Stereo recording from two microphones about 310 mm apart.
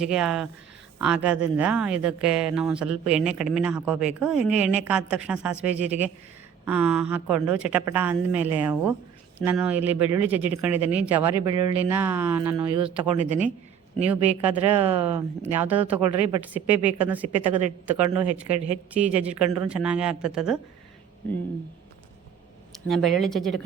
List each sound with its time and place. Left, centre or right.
0.0 s speech: centre
14.1 s speech: centre
14.8 s speech: centre
15.4 s speech: centre
22.9 s speech: centre